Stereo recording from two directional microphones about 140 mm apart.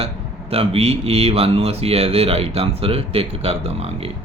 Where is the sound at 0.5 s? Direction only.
45° right (ahead or behind).